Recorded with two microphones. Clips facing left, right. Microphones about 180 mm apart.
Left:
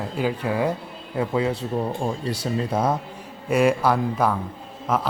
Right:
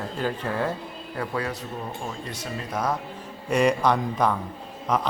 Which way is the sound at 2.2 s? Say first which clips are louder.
Left 8 dB; 35° left (ahead or behind).